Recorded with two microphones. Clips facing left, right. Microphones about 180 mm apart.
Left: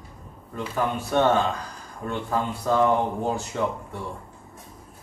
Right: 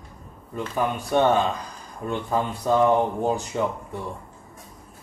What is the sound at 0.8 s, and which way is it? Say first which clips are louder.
Speech: right 1 dB; 15° right (ahead or behind).